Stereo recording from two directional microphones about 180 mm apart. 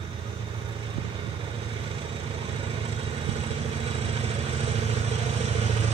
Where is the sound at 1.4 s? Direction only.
30° right (ahead or behind).